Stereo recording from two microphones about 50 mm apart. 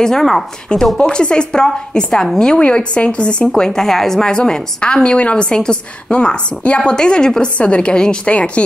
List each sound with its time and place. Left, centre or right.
0.0 s a woman's voice: centre
0.9 s a woman's voice: centre